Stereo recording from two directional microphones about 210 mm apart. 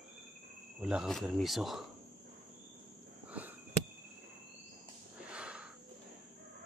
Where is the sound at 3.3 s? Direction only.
5° right (ahead or behind).